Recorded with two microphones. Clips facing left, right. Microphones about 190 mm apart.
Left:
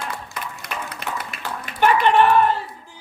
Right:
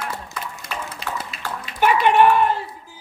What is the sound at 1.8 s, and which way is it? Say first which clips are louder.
Speech: even; 10° right (ahead or behind).